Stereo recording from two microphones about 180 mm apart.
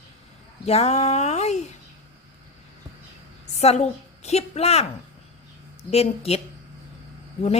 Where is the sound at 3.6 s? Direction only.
35° left (ahead or behind).